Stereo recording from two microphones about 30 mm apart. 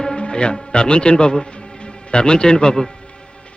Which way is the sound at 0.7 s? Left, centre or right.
Left.